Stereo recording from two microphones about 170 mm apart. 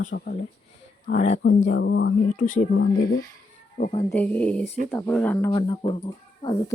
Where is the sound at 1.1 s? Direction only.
40° left (ahead or behind).